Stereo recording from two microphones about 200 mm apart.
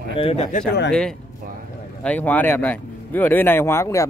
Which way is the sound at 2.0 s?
10° left (ahead or behind).